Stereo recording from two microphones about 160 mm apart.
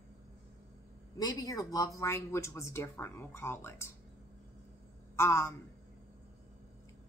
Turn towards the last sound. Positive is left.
turn(degrees=15)  # may be behind; listen again after turning